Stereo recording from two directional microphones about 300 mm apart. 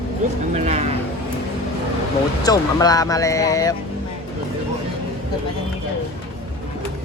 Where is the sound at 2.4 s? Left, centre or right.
Centre.